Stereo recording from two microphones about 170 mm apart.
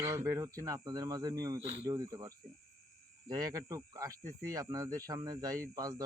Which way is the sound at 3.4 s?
20° right (ahead or behind).